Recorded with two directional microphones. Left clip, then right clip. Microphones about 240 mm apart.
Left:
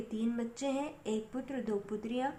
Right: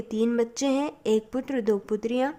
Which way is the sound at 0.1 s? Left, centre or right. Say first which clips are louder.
Right 15 dB; right.